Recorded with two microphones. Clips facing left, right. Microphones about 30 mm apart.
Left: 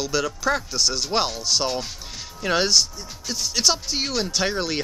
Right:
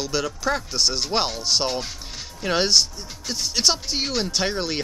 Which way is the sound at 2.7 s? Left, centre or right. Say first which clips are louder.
Right 1 dB; centre.